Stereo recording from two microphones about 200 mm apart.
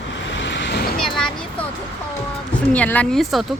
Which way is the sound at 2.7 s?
5° left (ahead or behind).